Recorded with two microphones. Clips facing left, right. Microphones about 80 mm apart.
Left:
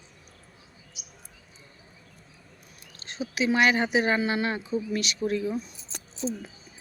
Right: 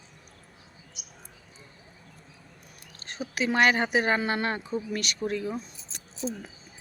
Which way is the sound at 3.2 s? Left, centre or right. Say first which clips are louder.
Left 1 dB; right.